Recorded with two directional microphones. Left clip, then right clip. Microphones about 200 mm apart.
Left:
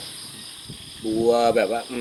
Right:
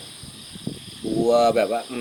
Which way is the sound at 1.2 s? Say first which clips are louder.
Right 1 dB; 15° right (ahead or behind).